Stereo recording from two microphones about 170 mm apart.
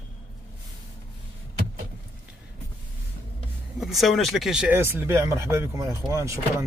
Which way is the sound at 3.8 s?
Centre (ahead or behind).